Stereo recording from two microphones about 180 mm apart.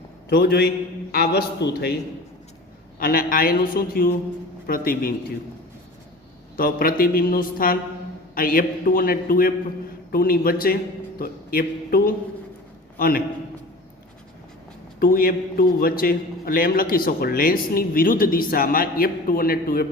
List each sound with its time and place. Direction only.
0.3 s a woman's voice: 65° left (ahead or behind)
3.0 s a woman's voice: 55° left (ahead or behind)
6.6 s a woman's voice: 55° left (ahead or behind)
14.9 s a man's voice: 55° left (ahead or behind)